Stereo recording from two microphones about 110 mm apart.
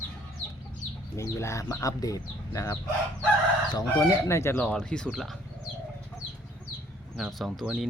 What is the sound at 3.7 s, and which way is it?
Speech, 35° left (ahead or behind).